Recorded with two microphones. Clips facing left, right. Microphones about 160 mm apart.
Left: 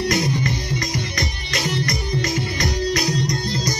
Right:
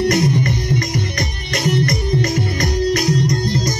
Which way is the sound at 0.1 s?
50° right (ahead or behind).